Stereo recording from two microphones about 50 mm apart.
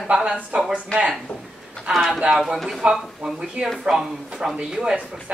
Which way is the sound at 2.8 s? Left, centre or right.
Centre.